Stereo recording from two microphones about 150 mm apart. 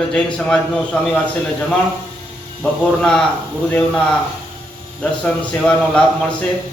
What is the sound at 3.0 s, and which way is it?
A man's voice, centre (ahead or behind).